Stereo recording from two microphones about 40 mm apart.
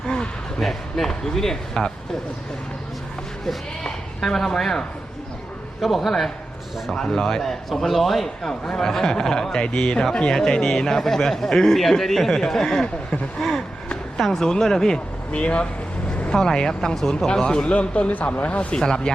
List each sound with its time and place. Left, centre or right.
0.6 s a man's voice: centre
4.4 s a man's voice: centre
5.8 s a man's voice: centre
6.9 s a man's voice: centre
13.4 s a man's voice: centre
15.3 s speech: left
16.3 s a man's voice: centre
18.1 s speech: left
18.8 s speech: centre